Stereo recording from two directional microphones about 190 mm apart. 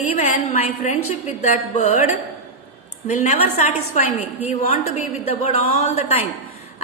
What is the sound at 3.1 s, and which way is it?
A woman's voice, 35° left (ahead or behind).